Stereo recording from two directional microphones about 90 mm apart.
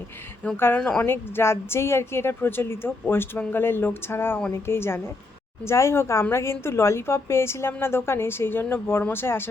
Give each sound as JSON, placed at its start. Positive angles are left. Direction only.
{"t": 0.5, "sound": "a woman's voice", "side_deg": 25}
{"t": 0.8, "sound": "a woman's voice", "side_deg": 10}
{"t": 1.0, "sound": "a woman's voice", "side_deg": 25}